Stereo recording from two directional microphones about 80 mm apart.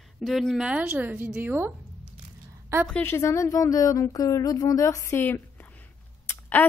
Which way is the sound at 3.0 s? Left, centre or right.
Left.